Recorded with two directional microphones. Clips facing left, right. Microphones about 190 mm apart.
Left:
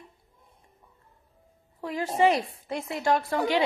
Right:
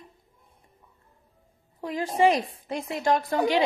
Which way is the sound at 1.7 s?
15° right (ahead or behind).